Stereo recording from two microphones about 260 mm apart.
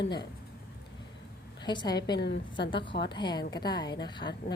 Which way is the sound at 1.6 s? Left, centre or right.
Centre.